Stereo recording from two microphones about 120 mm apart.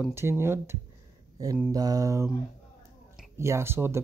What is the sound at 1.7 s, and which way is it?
Mantra, 30° right (ahead or behind).